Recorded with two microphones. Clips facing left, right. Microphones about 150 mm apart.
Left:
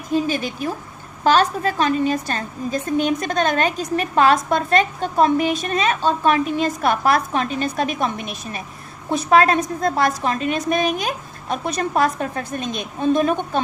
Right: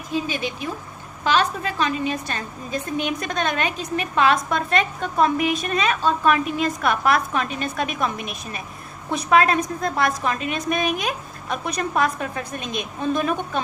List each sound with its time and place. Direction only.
0.1 s a woman's voice: 45° left (ahead or behind)
9.3 s a woman's voice: 35° left (ahead or behind)